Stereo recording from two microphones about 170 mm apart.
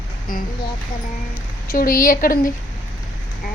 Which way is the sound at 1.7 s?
55° left (ahead or behind).